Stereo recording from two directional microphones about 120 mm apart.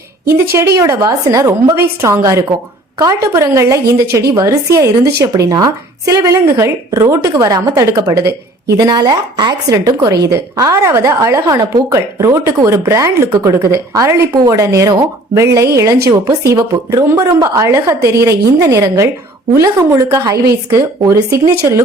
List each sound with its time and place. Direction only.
0.3 s a woman's voice: 25° right (ahead or behind)